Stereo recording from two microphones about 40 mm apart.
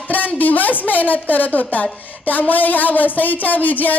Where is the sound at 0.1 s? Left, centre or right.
Left.